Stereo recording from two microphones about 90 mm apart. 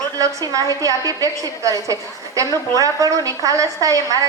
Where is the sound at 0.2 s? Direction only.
40° right (ahead or behind).